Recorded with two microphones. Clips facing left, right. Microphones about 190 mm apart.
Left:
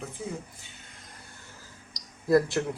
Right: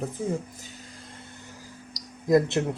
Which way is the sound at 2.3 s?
20° right (ahead or behind).